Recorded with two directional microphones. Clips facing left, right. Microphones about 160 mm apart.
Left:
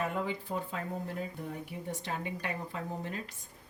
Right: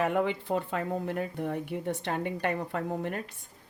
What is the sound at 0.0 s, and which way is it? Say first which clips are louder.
Speech: right 7 dB; 70° right (ahead or behind).